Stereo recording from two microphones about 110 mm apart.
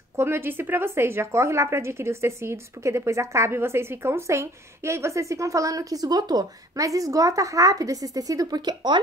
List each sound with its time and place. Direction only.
0.1 s a woman's voice: 20° right (ahead or behind); by 9.0 s 40° right (ahead or behind)